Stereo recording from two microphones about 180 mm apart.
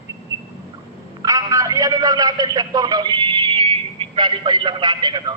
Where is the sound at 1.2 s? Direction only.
20° right (ahead or behind).